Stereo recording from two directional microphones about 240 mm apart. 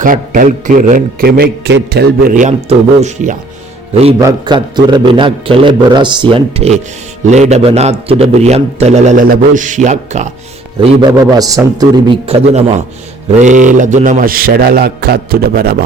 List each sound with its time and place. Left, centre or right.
0.0 s a man's voice: right
4.2 s a man's voice: centre
11.2 s a man's voice: centre; by 15.7 s right